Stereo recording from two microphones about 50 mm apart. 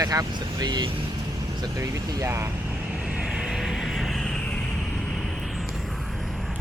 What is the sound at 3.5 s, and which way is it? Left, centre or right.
Vehicle, centre.